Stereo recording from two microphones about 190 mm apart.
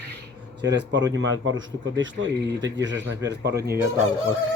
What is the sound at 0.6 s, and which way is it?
A man's voice, 70° right (ahead or behind).